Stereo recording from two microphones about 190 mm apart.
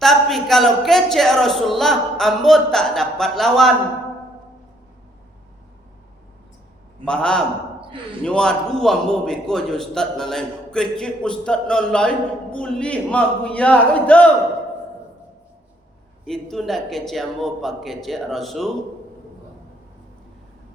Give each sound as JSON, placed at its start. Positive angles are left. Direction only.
{"t": 0.0, "sound": "a man's voice", "side_deg": 0}
{"t": 7.0, "sound": "a man's voice", "side_deg": 5}
{"t": 16.2, "sound": "a man's voice", "side_deg": 0}